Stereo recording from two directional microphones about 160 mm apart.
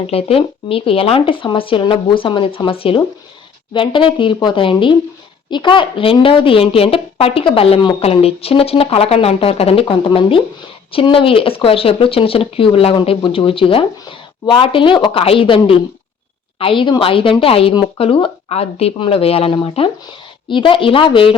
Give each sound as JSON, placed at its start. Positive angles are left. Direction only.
{"t": 0.1, "sound": "speech", "side_deg": 35}